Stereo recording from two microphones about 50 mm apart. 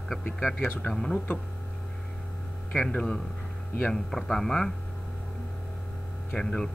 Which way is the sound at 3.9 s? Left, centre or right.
Centre.